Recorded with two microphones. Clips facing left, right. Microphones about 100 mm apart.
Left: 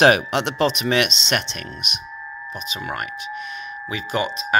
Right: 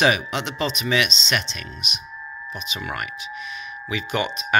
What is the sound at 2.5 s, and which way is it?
Speech, 40° left (ahead or behind).